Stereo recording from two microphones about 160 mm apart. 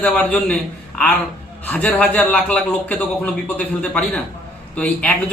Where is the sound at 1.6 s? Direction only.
10° left (ahead or behind).